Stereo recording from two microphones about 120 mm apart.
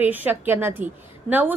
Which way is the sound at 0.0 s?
15° right (ahead or behind).